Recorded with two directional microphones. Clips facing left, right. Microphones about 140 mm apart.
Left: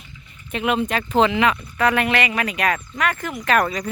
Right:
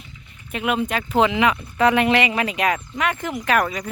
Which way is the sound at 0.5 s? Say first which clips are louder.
Left 1 dB; 5° right (ahead or behind).